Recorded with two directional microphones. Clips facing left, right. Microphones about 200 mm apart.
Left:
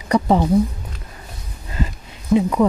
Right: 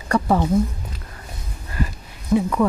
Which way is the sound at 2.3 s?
20° left (ahead or behind).